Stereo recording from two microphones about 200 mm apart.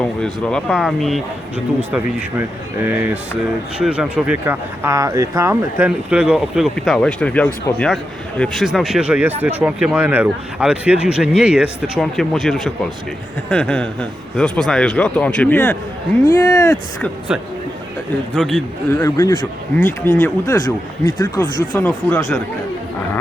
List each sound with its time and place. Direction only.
0.0 s speech: 5° left (ahead or behind)
2.8 s speech: 10° right (ahead or behind); by 16.8 s 15° left (ahead or behind)
17.0 s speech: 5° right (ahead or behind)
18.9 s speech: 15° left (ahead or behind)